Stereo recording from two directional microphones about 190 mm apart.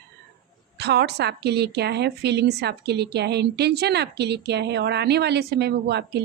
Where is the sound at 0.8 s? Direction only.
60° right (ahead or behind).